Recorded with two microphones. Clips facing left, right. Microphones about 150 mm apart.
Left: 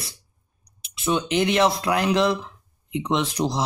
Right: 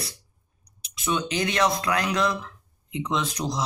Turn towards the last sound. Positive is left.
turn(degrees=30)  # may be behind; listen again after turning